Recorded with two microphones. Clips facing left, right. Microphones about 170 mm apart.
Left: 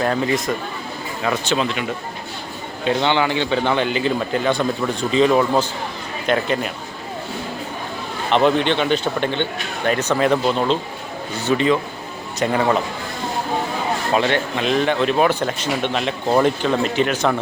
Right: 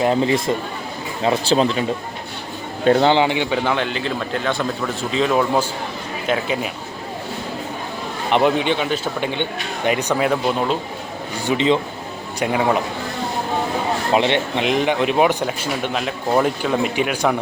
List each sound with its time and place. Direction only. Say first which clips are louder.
0.0 s a man's voice: right 2 dB; 20° right (ahead or behind)
2.8 s speech: right 5 dB; 40° right (ahead or behind)
3.2 s speech: right 1 dB; 15° right (ahead or behind)
3.6 s a man's voice: left 2 dB; centre (ahead or behind)
8.3 s speech: left 1 dB; 10° right (ahead or behind)
11.3 s a man's voice: even; 15° right (ahead or behind)
12.4 s speech: left 1 dB; 10° right (ahead or behind)
14.1 s speech: right 1 dB; 20° right (ahead or behind)